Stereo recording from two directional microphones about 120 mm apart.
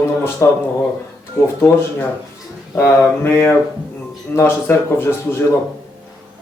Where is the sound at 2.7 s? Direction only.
20° left (ahead or behind).